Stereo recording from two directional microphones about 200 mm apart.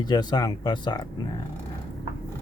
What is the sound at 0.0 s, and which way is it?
Speech, 20° left (ahead or behind).